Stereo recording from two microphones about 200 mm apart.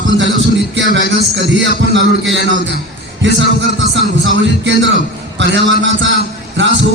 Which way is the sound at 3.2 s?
60° right (ahead or behind).